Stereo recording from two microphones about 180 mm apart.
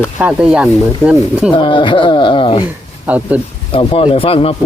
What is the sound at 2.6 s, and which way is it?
Speech, 10° right (ahead or behind).